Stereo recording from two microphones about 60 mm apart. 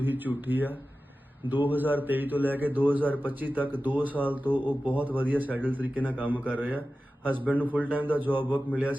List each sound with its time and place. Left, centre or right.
0.0 s a man's voice: right